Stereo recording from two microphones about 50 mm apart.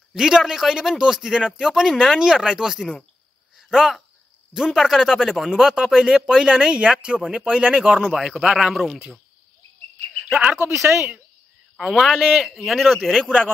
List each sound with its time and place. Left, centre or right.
0.1 s speech: centre
8.1 s speech: centre
10.6 s speech: right
12.0 s speech: centre